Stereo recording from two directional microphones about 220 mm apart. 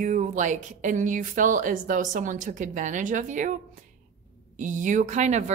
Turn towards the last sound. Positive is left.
turn(degrees=-30)  # may be behind; listen again after turning